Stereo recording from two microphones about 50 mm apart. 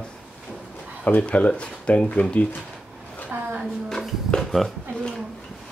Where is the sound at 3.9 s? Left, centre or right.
Centre.